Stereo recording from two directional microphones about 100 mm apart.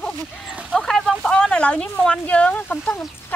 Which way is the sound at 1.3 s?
10° left (ahead or behind).